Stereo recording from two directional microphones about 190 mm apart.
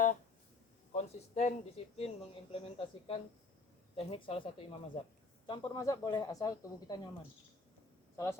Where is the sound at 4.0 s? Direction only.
30° left (ahead or behind).